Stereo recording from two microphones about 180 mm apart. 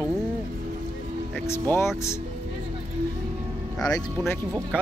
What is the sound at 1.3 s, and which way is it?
Speech, 15° left (ahead or behind).